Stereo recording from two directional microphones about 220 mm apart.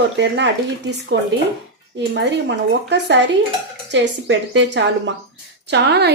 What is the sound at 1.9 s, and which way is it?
A woman's voice, 55° right (ahead or behind).